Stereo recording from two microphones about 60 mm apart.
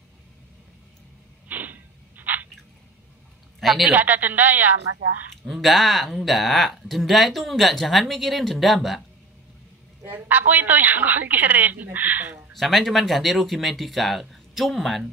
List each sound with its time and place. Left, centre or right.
1.5 s a sound: right
3.6 s speech: centre
3.9 s a woman's voice: right
5.4 s speech: centre
10.0 s a woman's voice: right
12.5 s speech: centre